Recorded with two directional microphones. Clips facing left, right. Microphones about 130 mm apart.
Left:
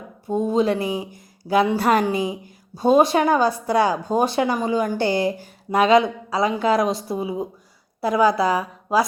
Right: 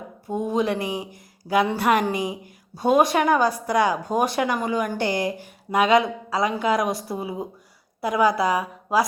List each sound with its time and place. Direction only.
0.3 s a woman's voice: 25° left (ahead or behind)